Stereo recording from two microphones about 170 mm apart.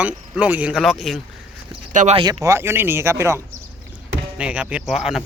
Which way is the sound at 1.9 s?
45° right (ahead or behind).